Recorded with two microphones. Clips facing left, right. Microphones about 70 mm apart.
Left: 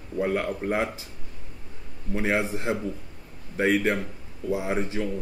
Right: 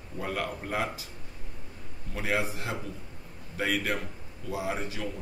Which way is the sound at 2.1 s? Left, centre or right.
Left.